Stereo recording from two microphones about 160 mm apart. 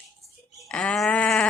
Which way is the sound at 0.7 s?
5° left (ahead or behind).